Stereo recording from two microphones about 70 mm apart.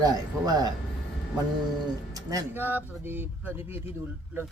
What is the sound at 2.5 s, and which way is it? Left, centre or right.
A man's voice, right.